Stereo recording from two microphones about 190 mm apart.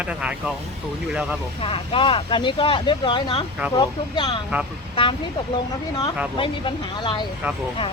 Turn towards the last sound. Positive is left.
turn(degrees=25)  # may be behind; listen again after turning